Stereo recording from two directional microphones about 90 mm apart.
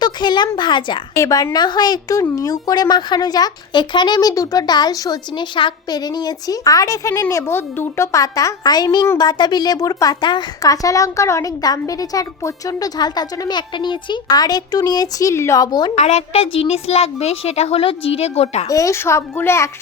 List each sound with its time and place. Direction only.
0.0 s speech: 55° left (ahead or behind)
1.1 s a woman's voice: 40° left (ahead or behind)
1.5 s speech: 50° left (ahead or behind)
10.2 s a woman's voice: 60° left (ahead or behind)
10.6 s a woman's voice: 40° left (ahead or behind)
13.6 s speech: 60° left (ahead or behind); by 15.9 s 45° left (ahead or behind)
16.4 s a woman's voice: 90° left
18.7 s a woman's voice: 35° left (ahead or behind)